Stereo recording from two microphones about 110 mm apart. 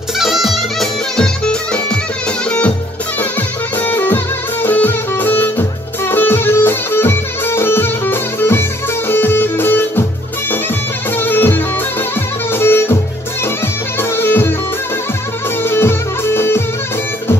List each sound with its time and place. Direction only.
0.2 s music: centre (ahead or behind)
3.2 s music: 15° left (ahead or behind)
11.1 s music: 20° left (ahead or behind)
13.9 s music: 20° left (ahead or behind)
15.6 s music: 20° left (ahead or behind)